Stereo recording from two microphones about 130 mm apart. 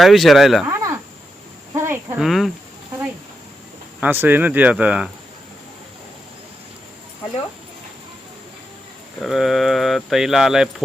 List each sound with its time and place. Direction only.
0.0 s speech: centre (ahead or behind)
0.7 s cricket: 20° right (ahead or behind)
2.1 s speech: centre (ahead or behind)
4.0 s speech: 15° right (ahead or behind)
9.2 s speech: centre (ahead or behind)